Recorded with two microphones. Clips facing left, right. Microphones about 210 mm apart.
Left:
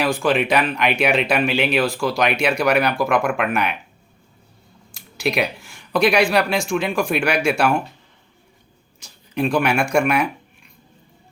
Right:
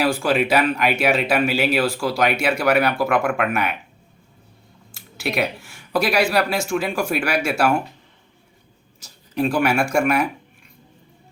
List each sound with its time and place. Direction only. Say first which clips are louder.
0.0 s speech: even; 5° right (ahead or behind)
4.9 s speech: left 2 dB; 5° right (ahead or behind)
9.0 s speech: even; 5° right (ahead or behind)